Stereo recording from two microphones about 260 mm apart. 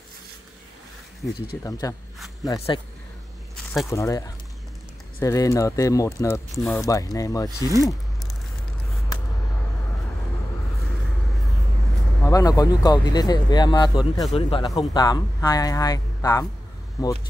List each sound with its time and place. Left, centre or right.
1.6 s speech: centre
3.9 s speech: centre
6.8 s speech: centre
7.4 s speech: centre
12.2 s speech: centre